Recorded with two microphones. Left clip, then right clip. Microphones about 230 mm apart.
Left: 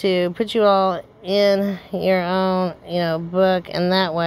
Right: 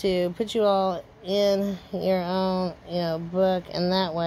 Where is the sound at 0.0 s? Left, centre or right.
Left.